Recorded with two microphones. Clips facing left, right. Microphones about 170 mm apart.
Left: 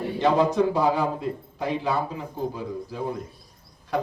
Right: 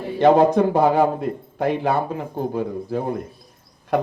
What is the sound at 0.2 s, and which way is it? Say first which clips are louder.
A man's voice: right 6 dB; 55° right (ahead or behind).